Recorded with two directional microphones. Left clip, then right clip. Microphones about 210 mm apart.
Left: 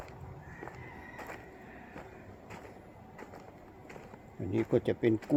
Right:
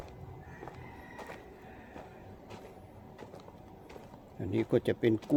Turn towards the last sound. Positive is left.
turn(degrees=0)  # may be behind; listen again after turning